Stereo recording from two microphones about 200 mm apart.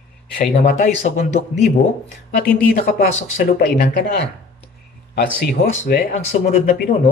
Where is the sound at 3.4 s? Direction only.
50° left (ahead or behind).